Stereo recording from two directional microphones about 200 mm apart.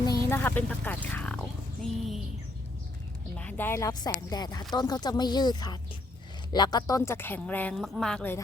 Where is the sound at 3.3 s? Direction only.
10° left (ahead or behind).